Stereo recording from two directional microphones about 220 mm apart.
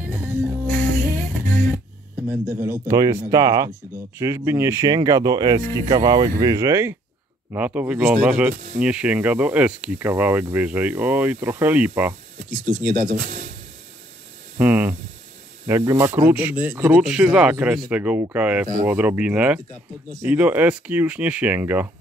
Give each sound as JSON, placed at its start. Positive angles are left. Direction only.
{"t": 0.0, "sound": "music", "side_deg": -5}
{"t": 2.1, "sound": "speech", "side_deg": -10}
{"t": 12.4, "sound": "speech", "side_deg": -40}
{"t": 14.6, "sound": "speech", "side_deg": -5}